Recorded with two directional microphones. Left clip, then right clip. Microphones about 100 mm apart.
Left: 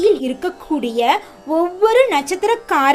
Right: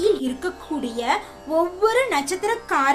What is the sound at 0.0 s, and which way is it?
A child's voice, 40° left (ahead or behind).